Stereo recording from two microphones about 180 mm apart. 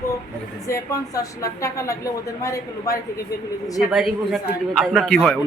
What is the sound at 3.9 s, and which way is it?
A man's voice, centre (ahead or behind).